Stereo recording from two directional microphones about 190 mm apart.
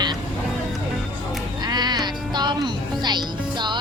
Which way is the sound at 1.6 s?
20° right (ahead or behind).